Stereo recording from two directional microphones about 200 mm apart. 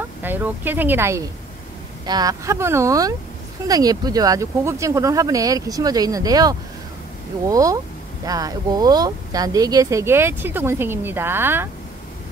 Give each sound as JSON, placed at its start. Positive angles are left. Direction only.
{"t": 0.2, "sound": "speech", "side_deg": -10}